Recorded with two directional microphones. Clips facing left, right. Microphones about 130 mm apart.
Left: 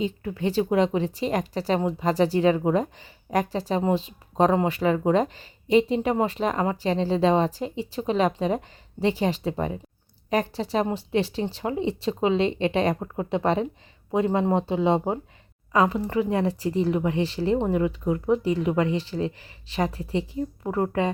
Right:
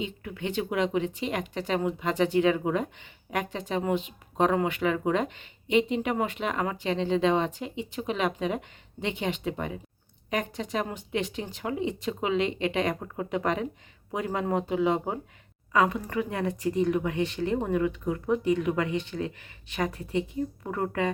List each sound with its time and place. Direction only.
0.0 s speech: 35° left (ahead or behind)